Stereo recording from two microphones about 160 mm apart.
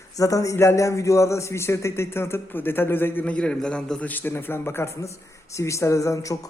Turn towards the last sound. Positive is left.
turn(degrees=20)  # may be behind; listen again after turning